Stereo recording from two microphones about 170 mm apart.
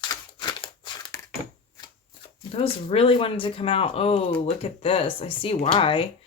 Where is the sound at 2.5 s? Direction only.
35° left (ahead or behind).